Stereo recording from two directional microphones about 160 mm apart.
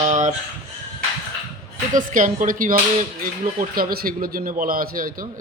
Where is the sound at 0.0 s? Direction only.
50° right (ahead or behind).